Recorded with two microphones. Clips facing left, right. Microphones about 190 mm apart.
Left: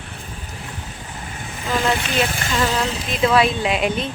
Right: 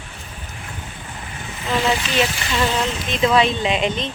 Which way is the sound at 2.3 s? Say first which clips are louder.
Left 2 dB; 50° left (ahead or behind).